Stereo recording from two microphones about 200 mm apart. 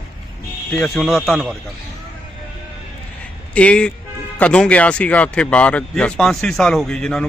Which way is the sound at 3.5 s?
5° left (ahead or behind).